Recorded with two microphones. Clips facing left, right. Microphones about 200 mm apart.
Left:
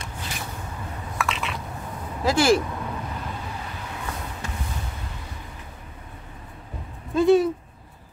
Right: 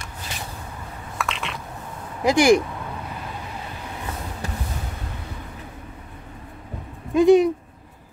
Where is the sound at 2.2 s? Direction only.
15° right (ahead or behind).